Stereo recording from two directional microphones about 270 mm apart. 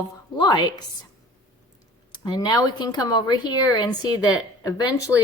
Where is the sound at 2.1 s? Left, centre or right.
Centre.